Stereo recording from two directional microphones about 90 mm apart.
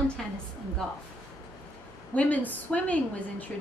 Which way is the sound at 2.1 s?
15° left (ahead or behind).